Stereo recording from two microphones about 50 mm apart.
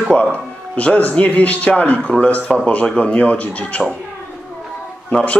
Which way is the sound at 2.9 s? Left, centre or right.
Left.